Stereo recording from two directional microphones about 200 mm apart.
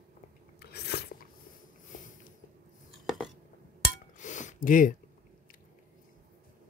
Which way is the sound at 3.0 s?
Centre (ahead or behind).